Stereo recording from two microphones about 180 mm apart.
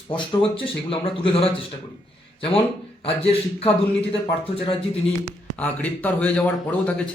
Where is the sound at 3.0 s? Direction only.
35° left (ahead or behind).